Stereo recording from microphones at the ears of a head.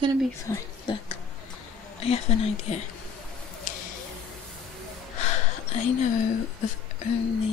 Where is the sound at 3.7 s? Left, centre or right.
Left.